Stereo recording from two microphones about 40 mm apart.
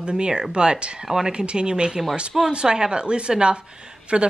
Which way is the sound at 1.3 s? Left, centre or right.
Right.